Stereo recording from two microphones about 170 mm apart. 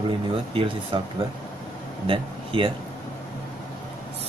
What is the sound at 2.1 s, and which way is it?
Speech, 30° right (ahead or behind).